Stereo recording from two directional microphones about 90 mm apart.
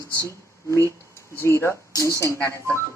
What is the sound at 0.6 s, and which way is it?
Speech, 30° left (ahead or behind).